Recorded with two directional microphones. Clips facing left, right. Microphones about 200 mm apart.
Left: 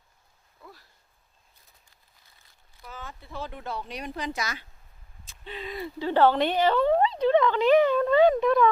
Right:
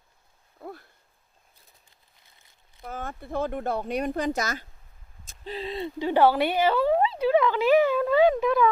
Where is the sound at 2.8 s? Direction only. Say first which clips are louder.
Right 7 dB; 55° right (ahead or behind).